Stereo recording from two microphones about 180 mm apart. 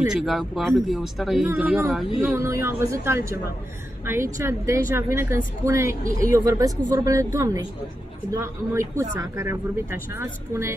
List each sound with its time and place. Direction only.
0.1 s speech: centre (ahead or behind)
2.3 s a woman's voice: 15° right (ahead or behind)